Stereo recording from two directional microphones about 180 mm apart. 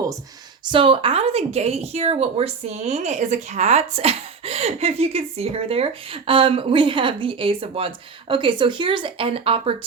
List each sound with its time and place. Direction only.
0.6 s speech: 25° right (ahead or behind)